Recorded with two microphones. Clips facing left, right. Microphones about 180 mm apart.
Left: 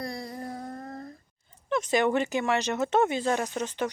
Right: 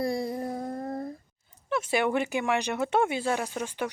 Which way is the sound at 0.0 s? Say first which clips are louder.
Right 6 dB; 25° right (ahead or behind).